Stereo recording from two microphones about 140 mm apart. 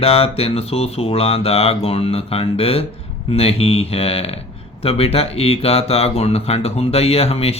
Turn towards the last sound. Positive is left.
turn(degrees=45)  # may be behind; listen again after turning